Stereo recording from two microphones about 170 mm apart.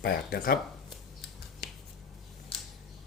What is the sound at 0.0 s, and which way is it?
Speech, 60° left (ahead or behind).